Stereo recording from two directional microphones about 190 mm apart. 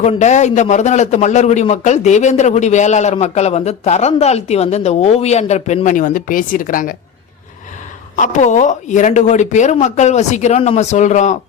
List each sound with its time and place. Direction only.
0.0 s a man's voice: 35° left (ahead or behind)
8.1 s a man's voice: 40° left (ahead or behind)